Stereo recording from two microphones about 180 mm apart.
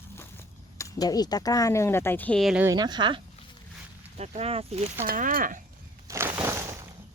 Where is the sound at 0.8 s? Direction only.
20° left (ahead or behind); by 2.6 s centre (ahead or behind).